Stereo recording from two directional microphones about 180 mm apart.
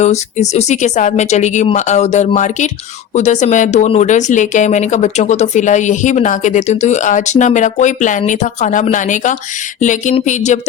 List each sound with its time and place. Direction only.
0.0 s speech: 40° left (ahead or behind)